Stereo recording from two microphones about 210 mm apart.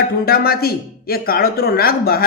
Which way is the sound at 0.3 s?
45° left (ahead or behind).